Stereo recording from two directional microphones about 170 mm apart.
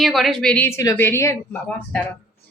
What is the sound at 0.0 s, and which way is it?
A woman's voice, centre (ahead or behind).